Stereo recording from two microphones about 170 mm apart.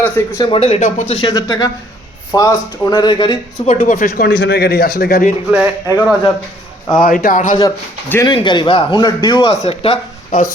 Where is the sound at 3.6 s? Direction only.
40° left (ahead or behind).